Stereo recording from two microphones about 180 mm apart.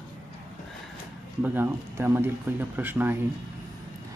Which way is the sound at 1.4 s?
10° right (ahead or behind).